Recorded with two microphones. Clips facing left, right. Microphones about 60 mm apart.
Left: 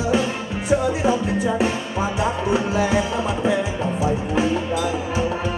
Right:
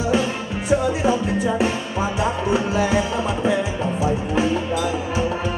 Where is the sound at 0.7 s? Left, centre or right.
Centre.